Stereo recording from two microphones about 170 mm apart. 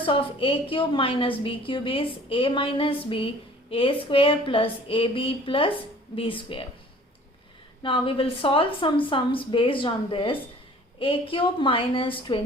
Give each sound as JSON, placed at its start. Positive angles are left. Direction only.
{"t": 0.0, "sound": "a woman's voice", "side_deg": 30}
{"t": 7.8, "sound": "a woman's voice", "side_deg": 30}